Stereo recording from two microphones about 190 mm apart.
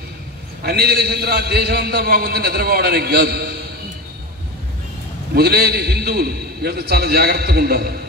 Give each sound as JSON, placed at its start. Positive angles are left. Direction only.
{"t": 0.7, "sound": "a man's voice", "side_deg": -55}
{"t": 5.3, "sound": "a man's voice", "side_deg": -55}